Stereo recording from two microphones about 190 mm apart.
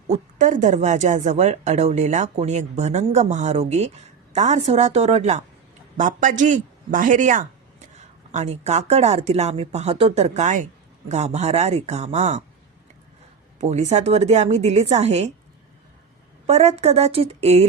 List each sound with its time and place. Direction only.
0.1 s speech: 40° right (ahead or behind)
13.6 s speech: 35° right (ahead or behind)
16.5 s speech: 35° right (ahead or behind)